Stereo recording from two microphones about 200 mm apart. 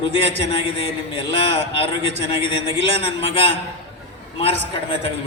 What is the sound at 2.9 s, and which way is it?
Speech, 25° left (ahead or behind).